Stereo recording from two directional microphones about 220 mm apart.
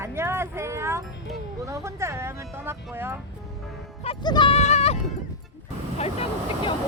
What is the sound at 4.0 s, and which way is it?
Speech, 20° left (ahead or behind).